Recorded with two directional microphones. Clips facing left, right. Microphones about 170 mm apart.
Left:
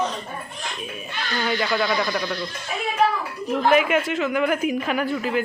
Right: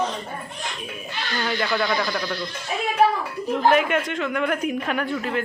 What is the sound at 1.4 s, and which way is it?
Speech, 5° left (ahead or behind).